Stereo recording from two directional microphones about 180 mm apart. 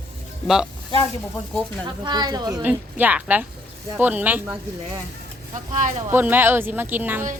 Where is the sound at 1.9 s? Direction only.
25° right (ahead or behind).